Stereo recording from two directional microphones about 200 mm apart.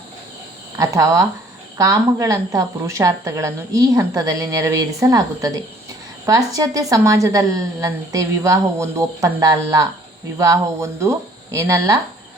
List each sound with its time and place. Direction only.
0.8 s a woman's voice: 15° right (ahead or behind)